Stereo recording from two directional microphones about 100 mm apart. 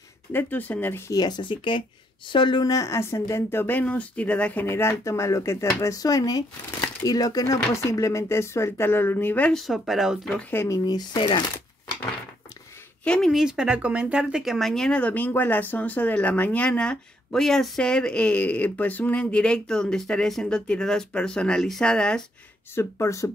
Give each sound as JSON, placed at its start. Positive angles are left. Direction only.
{"t": 0.3, "sound": "a woman's voice", "side_deg": 20}
{"t": 1.1, "sound": "speech", "side_deg": 45}
{"t": 2.7, "sound": "a woman's voice", "side_deg": 30}
{"t": 9.5, "sound": "speech", "side_deg": 0}
{"t": 10.5, "sound": "a woman's voice", "side_deg": 25}
{"t": 11.1, "sound": "speech", "side_deg": 55}
{"t": 13.0, "sound": "speech", "side_deg": 10}
{"t": 13.3, "sound": "speech", "side_deg": -5}
{"t": 22.8, "sound": "speech", "side_deg": 30}